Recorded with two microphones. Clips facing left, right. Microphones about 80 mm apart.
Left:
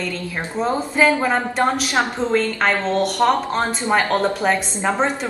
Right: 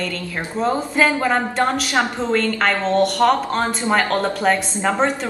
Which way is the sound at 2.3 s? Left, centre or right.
Centre.